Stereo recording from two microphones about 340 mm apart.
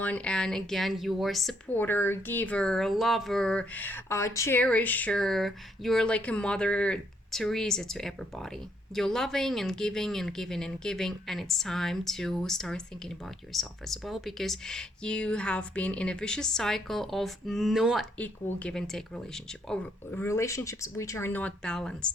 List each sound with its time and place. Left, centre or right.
0.0 s speech: centre